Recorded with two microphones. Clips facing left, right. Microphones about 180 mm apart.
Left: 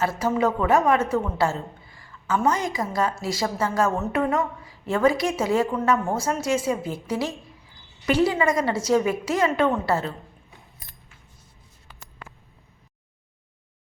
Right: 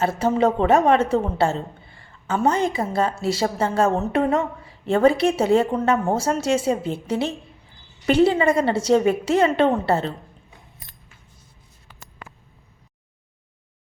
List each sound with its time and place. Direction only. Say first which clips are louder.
0.2 s a woman's voice: right 5 dB; 30° right (ahead or behind)